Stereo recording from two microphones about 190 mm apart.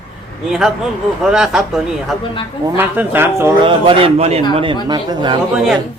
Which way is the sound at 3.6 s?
25° right (ahead or behind).